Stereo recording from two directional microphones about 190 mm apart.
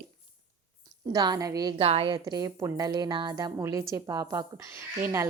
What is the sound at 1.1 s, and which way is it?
Speech, 20° right (ahead or behind).